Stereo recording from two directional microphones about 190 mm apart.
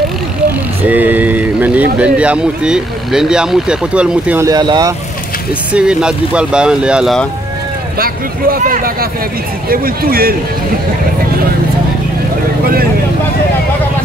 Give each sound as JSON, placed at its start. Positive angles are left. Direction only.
{"t": 0.8, "sound": "speech", "side_deg": -10}
{"t": 4.5, "sound": "speech", "side_deg": -20}
{"t": 5.7, "sound": "speech", "side_deg": -5}
{"t": 8.0, "sound": "speech", "side_deg": -50}